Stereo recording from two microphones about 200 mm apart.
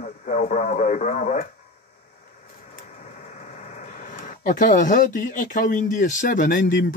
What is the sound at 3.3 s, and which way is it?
Speech, 40° left (ahead or behind).